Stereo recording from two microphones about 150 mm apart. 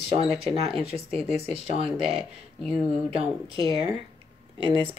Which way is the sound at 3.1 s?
40° right (ahead or behind).